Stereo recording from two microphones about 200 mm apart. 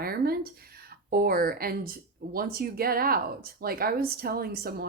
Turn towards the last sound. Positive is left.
turn(degrees=-50)  # may be behind; listen again after turning